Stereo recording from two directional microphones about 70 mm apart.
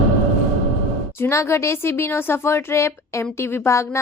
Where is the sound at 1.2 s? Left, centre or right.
Left.